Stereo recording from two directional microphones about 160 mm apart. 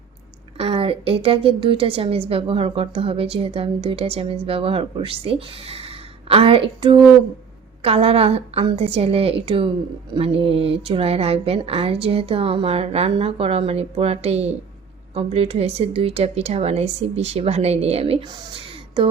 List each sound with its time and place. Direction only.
0.5 s a woman's voice: 40° right (ahead or behind)